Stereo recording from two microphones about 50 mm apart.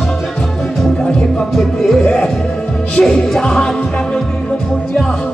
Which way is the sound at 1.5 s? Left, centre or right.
Centre.